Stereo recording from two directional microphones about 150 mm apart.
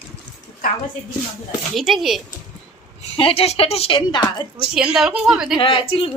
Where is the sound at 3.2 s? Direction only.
40° left (ahead or behind).